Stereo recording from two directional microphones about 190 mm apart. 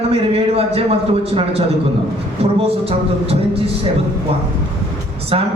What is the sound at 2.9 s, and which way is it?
Speech, 30° right (ahead or behind).